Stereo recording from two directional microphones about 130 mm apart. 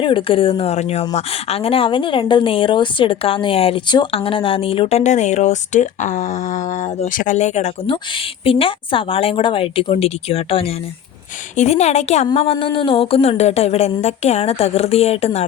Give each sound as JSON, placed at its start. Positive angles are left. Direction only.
{"t": 0.0, "sound": "a woman's voice", "side_deg": 40}
{"t": 7.9, "sound": "a woman's voice", "side_deg": 45}
{"t": 11.5, "sound": "a woman's voice", "side_deg": 60}